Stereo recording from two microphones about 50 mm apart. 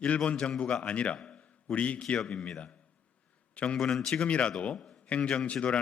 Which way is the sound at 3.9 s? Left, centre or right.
Centre.